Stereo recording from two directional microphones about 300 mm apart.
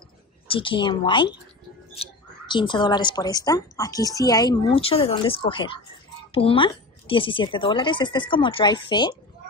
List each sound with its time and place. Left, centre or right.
0.5 s speech: centre